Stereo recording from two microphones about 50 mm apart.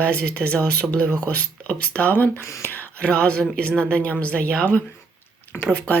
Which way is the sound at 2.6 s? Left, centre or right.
Left.